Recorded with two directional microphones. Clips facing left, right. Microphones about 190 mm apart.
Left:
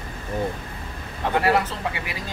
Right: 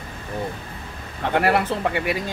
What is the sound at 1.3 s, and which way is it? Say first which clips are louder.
Speech: right 2 dB; 55° right (ahead or behind).